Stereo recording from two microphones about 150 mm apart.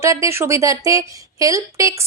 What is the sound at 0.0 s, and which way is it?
A woman's voice, 20° right (ahead or behind).